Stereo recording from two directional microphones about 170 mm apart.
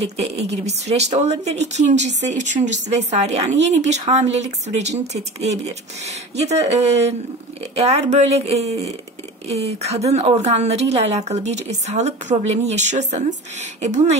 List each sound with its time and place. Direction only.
0.7 s a woman's voice: 40° right (ahead or behind)